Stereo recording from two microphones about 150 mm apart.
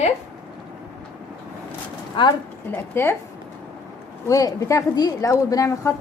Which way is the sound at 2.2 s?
35° left (ahead or behind).